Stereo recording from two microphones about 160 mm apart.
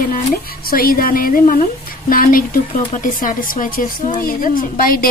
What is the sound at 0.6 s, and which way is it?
Speech, 65° left (ahead or behind).